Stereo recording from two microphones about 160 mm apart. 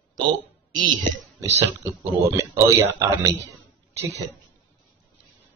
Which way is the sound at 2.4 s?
15° right (ahead or behind).